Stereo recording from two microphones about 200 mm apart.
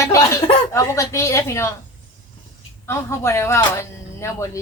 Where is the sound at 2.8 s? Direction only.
15° left (ahead or behind).